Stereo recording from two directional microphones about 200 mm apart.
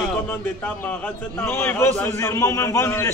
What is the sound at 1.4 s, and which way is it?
A man's voice, 10° left (ahead or behind).